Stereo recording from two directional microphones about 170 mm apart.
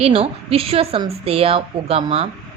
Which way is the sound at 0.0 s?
35° right (ahead or behind).